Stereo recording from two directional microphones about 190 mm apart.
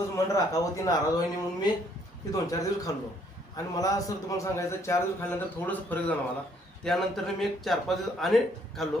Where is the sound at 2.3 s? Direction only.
20° left (ahead or behind).